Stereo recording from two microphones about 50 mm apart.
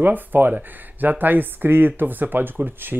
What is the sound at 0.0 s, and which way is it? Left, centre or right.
Speech, right.